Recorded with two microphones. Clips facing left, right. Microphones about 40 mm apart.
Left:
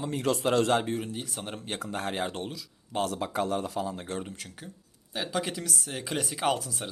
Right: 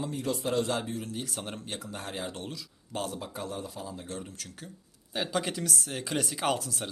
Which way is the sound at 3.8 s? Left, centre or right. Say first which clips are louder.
Left 5 dB; left.